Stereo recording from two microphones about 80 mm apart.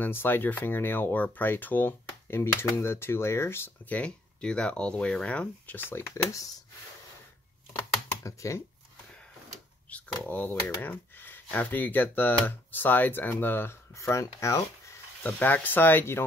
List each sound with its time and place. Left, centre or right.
0.0 s speech: left
3.9 s speech: centre
8.2 s speech: left
9.8 s speech: centre
10.8 s a sound: left
11.5 s speech: left
13.9 s speech: left
15.2 s speech: left